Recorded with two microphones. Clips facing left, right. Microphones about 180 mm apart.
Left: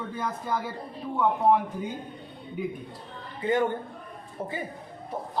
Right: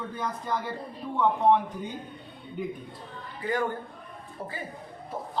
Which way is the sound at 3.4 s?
25° left (ahead or behind).